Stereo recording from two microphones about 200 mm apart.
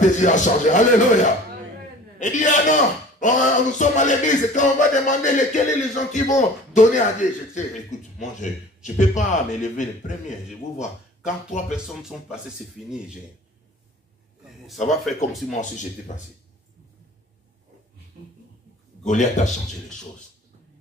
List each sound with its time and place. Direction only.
0.0 s a man's voice: 40° left (ahead or behind)
11.7 s speech: 5° right (ahead or behind)
15.1 s a man's voice: 40° left (ahead or behind)
19.0 s a man's voice: 35° left (ahead or behind)